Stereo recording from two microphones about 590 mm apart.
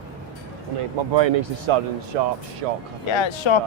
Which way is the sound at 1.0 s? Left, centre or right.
Right.